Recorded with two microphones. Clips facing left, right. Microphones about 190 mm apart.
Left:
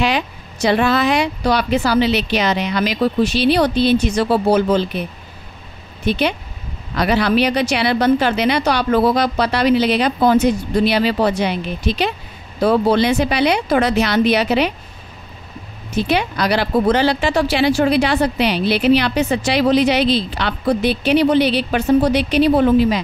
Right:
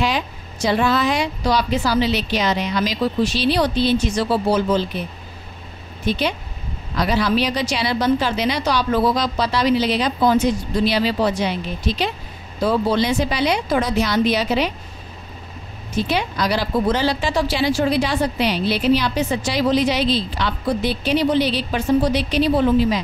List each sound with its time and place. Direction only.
0.0 s a woman's voice: 70° left (ahead or behind)
6.0 s a woman's voice: 65° left (ahead or behind)
16.1 s a woman's voice: 65° left (ahead or behind)